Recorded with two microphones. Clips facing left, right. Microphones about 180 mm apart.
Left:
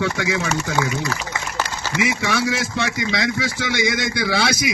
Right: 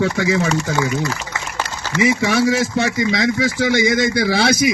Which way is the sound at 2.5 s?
40° right (ahead or behind).